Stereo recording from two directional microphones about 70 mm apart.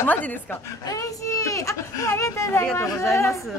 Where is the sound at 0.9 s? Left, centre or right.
Left.